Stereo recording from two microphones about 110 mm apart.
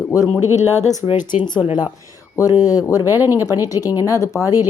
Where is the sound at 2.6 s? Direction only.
35° left (ahead or behind).